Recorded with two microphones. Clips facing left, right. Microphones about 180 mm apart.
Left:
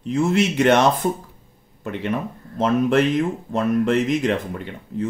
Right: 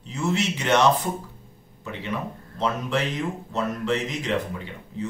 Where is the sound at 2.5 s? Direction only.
50° left (ahead or behind).